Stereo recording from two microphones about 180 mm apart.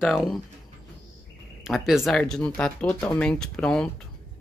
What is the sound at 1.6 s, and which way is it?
Speech, centre (ahead or behind).